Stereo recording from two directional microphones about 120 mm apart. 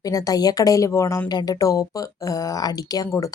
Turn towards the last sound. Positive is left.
turn(degrees=30)  # may be behind; listen again after turning